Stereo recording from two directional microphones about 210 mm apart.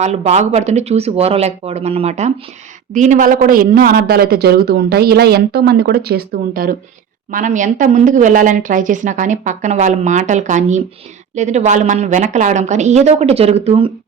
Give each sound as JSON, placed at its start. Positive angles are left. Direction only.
{"t": 0.0, "sound": "a woman's voice", "side_deg": -30}